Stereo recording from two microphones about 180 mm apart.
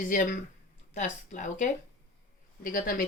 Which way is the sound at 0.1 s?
45° left (ahead or behind).